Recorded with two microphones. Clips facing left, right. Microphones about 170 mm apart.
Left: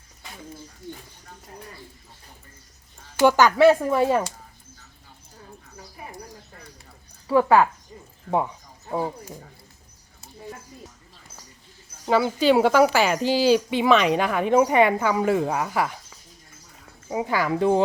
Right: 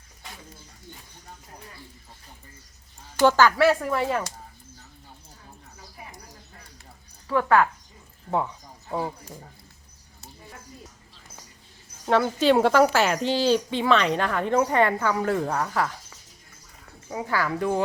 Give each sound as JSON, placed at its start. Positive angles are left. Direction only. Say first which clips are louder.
{"t": 3.2, "sound": "speech", "louder": "left 2 dB", "side_deg": 15}
{"t": 7.3, "sound": "speech", "louder": "left 3 dB", "side_deg": 15}
{"t": 12.0, "sound": "speech", "louder": "left 1 dB", "side_deg": 5}
{"t": 17.1, "sound": "speech", "louder": "left 3 dB", "side_deg": 15}